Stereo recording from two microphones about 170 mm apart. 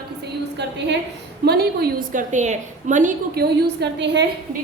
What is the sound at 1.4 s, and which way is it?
A woman's voice, 70° right (ahead or behind).